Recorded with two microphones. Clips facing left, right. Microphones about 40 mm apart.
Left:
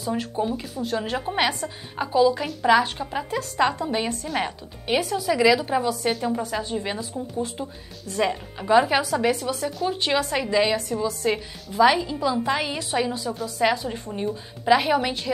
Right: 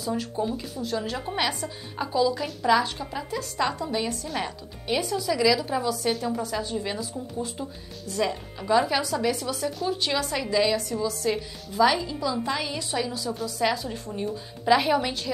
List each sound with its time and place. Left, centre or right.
0.0 s a woman's voice: left
8.1 s a woman's voice: left